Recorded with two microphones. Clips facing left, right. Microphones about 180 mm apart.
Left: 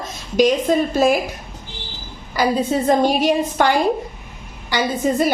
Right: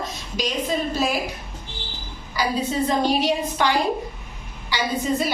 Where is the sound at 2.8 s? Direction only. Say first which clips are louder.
Left 5 dB; 50° left (ahead or behind).